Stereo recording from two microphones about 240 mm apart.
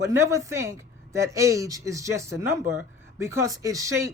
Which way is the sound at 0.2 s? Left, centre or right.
Centre.